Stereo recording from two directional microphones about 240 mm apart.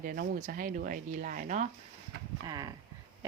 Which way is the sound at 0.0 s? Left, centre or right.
Right.